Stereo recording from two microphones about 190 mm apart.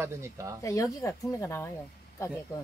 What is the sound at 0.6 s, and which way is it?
Speech, 15° left (ahead or behind).